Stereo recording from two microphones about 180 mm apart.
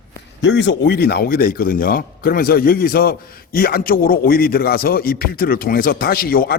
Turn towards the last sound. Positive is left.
turn(degrees=55)  # may be behind; listen again after turning